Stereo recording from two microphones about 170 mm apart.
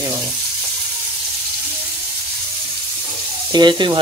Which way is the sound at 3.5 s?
25° right (ahead or behind).